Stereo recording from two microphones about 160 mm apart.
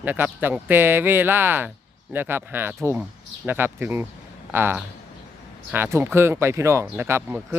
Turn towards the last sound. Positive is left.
turn(degrees=-10)  # may be behind; listen again after turning